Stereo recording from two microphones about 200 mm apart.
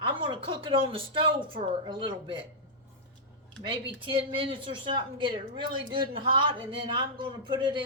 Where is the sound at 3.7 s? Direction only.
25° right (ahead or behind).